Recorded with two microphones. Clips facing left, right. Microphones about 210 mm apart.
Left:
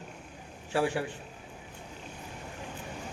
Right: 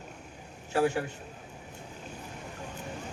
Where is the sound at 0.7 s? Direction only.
40° right (ahead or behind).